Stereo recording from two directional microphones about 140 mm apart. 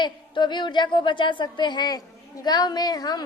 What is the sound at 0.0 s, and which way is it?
A woman's voice, 35° left (ahead or behind).